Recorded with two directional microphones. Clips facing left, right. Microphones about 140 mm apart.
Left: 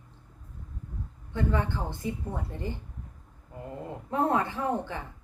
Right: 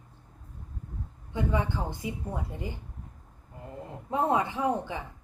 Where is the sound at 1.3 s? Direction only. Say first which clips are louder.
Even; 15° right (ahead or behind).